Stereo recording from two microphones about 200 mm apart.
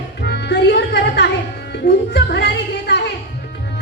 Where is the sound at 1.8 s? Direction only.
50° left (ahead or behind).